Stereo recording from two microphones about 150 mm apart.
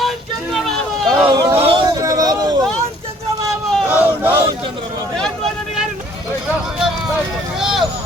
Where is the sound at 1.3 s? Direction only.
25° right (ahead or behind).